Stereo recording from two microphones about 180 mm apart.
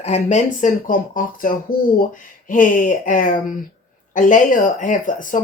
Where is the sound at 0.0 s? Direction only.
40° left (ahead or behind).